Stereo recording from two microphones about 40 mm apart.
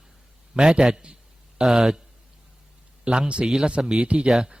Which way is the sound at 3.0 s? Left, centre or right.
Right.